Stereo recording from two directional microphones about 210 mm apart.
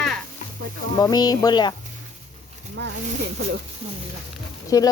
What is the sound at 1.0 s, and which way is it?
Speech, 20° left (ahead or behind).